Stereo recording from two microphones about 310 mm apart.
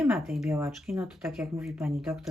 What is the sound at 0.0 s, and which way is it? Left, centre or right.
Speech, centre.